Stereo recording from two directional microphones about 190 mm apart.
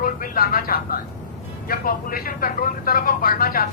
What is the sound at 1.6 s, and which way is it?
Speech, 50° left (ahead or behind).